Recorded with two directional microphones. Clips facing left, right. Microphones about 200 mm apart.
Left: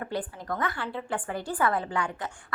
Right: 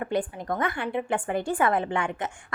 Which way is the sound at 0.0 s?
20° right (ahead or behind).